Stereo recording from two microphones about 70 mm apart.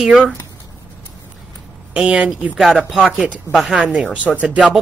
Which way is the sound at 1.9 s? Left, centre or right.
Centre.